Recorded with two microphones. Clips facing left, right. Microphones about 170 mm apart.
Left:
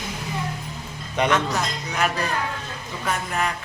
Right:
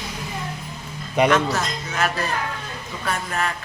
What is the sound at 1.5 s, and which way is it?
Speech, 15° left (ahead or behind).